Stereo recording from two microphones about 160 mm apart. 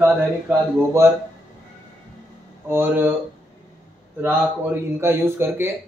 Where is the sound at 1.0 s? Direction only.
15° right (ahead or behind).